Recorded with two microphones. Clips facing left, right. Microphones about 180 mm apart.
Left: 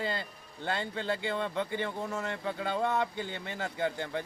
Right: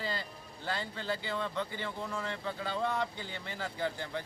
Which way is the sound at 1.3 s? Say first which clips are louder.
Left 4 dB; 50° left (ahead or behind).